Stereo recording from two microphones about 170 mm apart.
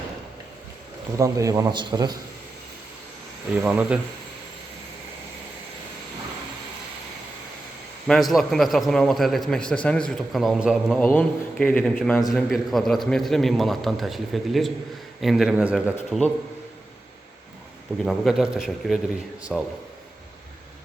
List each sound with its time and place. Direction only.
1.2 s a man's voice: 20° right (ahead or behind)
3.6 s speech: 10° right (ahead or behind)
8.0 s a man's voice: centre (ahead or behind)
11.0 s a man's voice: 10° left (ahead or behind)
18.0 s a man's voice: centre (ahead or behind)